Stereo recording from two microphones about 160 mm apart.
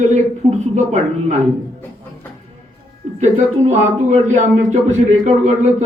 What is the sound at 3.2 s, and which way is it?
A man's voice, 45° right (ahead or behind).